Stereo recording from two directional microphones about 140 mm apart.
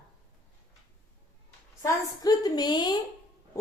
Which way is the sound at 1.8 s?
25° left (ahead or behind).